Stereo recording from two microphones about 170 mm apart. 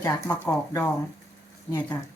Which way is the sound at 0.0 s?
15° left (ahead or behind).